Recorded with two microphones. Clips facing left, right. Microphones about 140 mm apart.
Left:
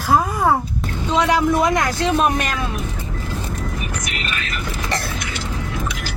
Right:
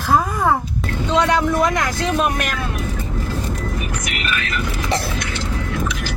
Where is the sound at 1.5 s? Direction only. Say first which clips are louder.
Left 1 dB; 25° left (ahead or behind).